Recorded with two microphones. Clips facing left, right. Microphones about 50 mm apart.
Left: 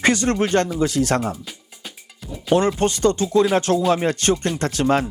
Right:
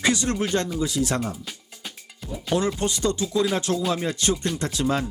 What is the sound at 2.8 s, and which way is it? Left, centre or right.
Speech, left.